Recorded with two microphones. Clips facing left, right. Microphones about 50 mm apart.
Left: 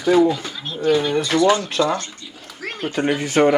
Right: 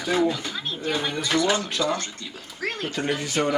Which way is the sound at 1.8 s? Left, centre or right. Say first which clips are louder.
Left 5 dB; left.